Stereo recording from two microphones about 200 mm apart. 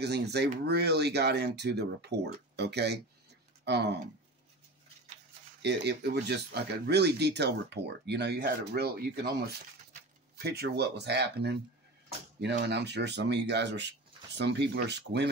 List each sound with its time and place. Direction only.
0.0 s speech: 55° right (ahead or behind)
5.6 s speech: 55° right (ahead or behind)
10.4 s speech: 55° right (ahead or behind)
12.6 s speech: 60° right (ahead or behind)